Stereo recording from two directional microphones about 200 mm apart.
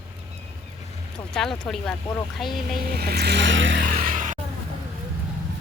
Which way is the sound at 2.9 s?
50° right (ahead or behind).